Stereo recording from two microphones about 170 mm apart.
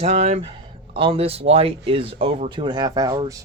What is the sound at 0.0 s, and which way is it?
Speech, 40° right (ahead or behind).